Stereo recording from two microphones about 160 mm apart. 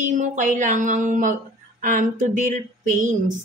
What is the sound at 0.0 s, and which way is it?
Speech, 50° right (ahead or behind).